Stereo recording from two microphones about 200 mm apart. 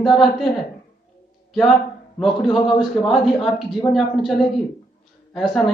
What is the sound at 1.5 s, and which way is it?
A man's voice, centre (ahead or behind).